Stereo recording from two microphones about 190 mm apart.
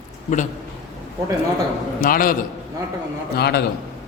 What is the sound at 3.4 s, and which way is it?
Speech, 55° left (ahead or behind).